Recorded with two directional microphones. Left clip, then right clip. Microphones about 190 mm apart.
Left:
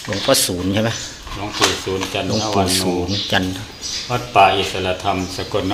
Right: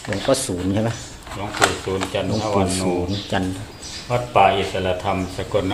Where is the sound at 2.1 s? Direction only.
20° left (ahead or behind).